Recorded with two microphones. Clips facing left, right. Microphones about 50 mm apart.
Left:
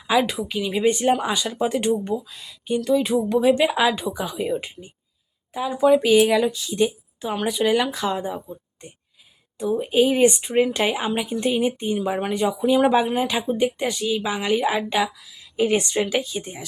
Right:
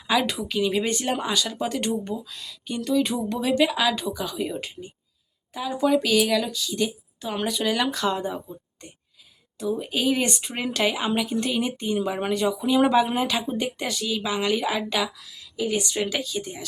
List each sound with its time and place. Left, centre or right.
0.1 s speech: centre
3.3 s speech: left
5.7 s speech: centre
9.6 s speech: centre
15.5 s a woman's voice: left
16.0 s speech: left